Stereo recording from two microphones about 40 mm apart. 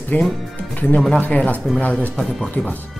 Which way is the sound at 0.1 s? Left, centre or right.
Left.